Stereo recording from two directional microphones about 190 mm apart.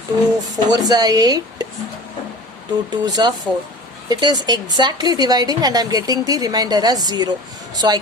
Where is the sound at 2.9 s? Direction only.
20° right (ahead or behind).